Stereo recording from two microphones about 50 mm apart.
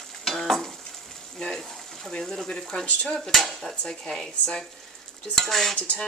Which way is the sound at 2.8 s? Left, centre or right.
Left.